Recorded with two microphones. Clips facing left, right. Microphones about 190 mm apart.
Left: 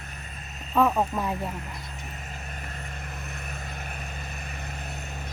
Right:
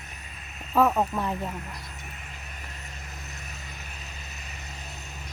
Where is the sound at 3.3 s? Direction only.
55° left (ahead or behind).